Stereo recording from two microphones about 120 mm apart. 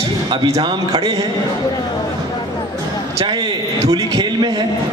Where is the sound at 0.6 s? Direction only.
50° right (ahead or behind).